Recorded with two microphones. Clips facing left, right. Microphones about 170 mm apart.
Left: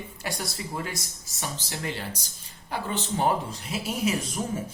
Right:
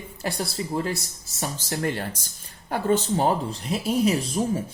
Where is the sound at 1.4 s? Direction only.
45° right (ahead or behind).